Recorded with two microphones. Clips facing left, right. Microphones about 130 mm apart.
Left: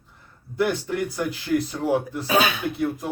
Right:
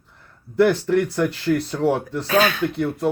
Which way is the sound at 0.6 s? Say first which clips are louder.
Right 7 dB; 70° right (ahead or behind).